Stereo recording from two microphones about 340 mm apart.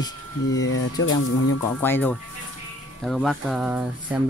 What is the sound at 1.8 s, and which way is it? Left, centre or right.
Speech, centre.